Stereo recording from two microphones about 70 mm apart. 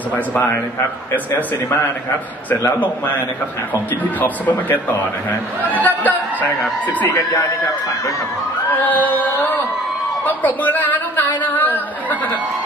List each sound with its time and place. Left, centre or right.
0.1 s speech: left
4.2 s speech: left
8.8 s speech: left